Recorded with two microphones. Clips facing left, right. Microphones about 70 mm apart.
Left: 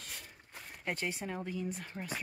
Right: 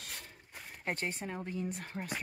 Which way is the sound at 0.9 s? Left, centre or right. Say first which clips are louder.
Even; right.